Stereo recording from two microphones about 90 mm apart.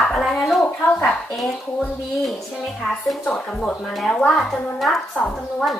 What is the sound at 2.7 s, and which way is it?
A woman's voice, 5° left (ahead or behind).